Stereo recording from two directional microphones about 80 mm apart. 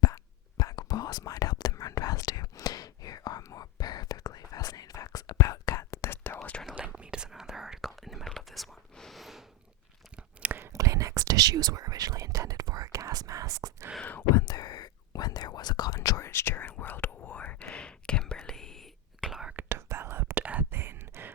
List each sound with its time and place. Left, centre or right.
0.0 s whispering: left
6.1 s whispering: left
6.7 s whispering: centre
10.2 s whispering: centre
10.7 s whispering: right
14.0 s whispering: left
14.4 s whispering: left
16.0 s whispering: left; by 19.4 s centre
19.5 s whispering: right
20.4 s whispering: centre
20.7 s whispering: right